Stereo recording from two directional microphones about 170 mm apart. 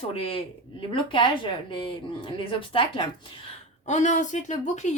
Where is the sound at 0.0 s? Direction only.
35° left (ahead or behind).